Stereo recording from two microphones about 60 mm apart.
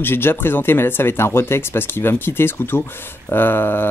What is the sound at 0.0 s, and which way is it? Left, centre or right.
Speech, left.